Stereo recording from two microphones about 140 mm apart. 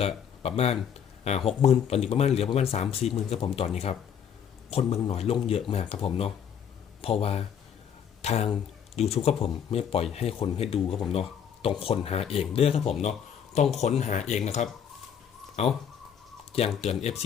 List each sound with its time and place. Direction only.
0.0 s speech: 45° left (ahead or behind)
4.7 s speech: 45° left (ahead or behind)
13.0 s a sound: 55° left (ahead or behind)
14.0 s speech: 55° left (ahead or behind)